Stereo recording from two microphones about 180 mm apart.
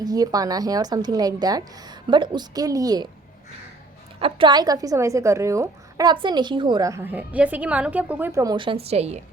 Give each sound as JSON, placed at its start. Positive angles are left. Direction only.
{"t": 0.0, "sound": "a woman's voice", "side_deg": -20}
{"t": 4.2, "sound": "a woman's voice", "side_deg": -25}